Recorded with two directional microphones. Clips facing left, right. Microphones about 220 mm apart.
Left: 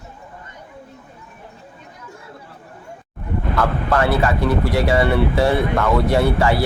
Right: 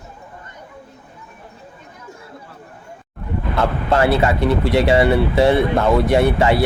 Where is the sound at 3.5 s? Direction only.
25° right (ahead or behind).